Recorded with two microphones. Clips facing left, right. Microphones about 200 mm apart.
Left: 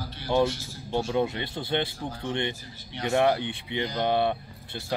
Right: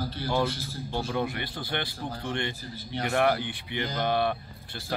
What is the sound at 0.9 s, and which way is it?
A man's voice, 20° left (ahead or behind).